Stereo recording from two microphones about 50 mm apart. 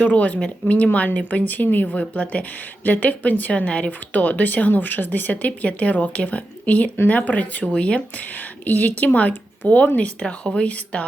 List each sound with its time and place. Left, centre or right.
0.0 s speech: left